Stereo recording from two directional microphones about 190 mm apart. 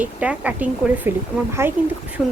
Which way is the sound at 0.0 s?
10° right (ahead or behind).